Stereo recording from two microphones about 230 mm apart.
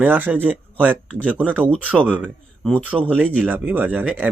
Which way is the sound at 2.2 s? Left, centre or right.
Centre.